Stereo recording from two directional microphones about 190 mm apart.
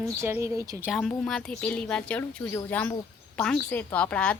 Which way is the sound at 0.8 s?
Centre (ahead or behind).